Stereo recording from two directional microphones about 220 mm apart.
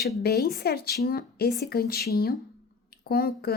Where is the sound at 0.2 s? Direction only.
45° left (ahead or behind).